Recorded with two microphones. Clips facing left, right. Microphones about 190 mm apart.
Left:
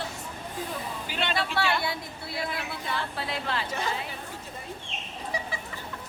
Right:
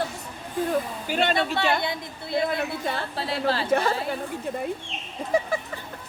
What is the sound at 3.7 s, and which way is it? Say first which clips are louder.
Speech: right 9 dB; 55° right (ahead or behind).